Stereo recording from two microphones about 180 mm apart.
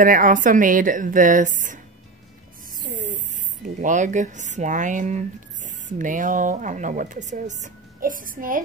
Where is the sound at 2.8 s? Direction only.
45° right (ahead or behind).